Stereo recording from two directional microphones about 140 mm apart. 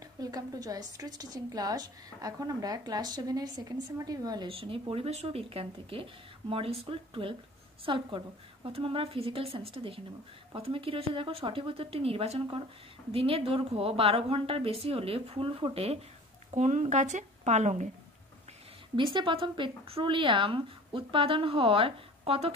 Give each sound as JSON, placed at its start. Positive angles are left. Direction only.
{"t": 0.2, "sound": "a woman's voice", "side_deg": -25}
{"t": 4.5, "sound": "a woman's voice", "side_deg": -40}
{"t": 16.5, "sound": "speech", "side_deg": -55}
{"t": 18.9, "sound": "speech", "side_deg": -35}